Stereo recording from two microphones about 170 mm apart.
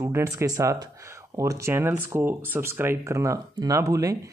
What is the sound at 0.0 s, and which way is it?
Speech, 15° right (ahead or behind).